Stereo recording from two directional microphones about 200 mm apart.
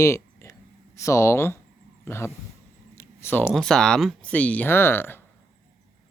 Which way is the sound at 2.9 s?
10° left (ahead or behind).